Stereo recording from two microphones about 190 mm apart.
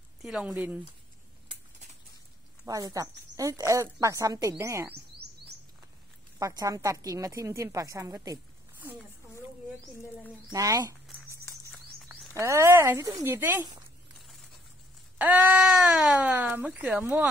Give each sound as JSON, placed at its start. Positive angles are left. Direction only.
{"t": 0.2, "sound": "speech", "side_deg": 0}
{"t": 2.6, "sound": "a woman's voice", "side_deg": -15}
{"t": 6.4, "sound": "a woman's voice", "side_deg": -20}
{"t": 10.5, "sound": "a woman's voice", "side_deg": -20}
{"t": 11.2, "sound": "a sound", "side_deg": 15}
{"t": 12.4, "sound": "a woman's voice", "side_deg": -15}
{"t": 15.1, "sound": "a woman's voice", "side_deg": -10}